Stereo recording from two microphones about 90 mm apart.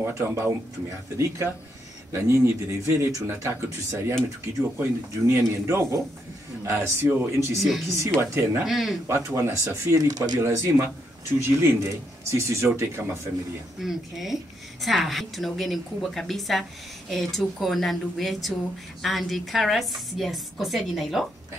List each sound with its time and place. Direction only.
0.0 s speech: 25° right (ahead or behind)
4.7 s speech: 30° right (ahead or behind)
8.6 s a woman's voice: centre (ahead or behind)
9.0 s speech: 35° right (ahead or behind)
10.4 s speech: 30° right (ahead or behind)
13.7 s a woman's voice: 5° right (ahead or behind)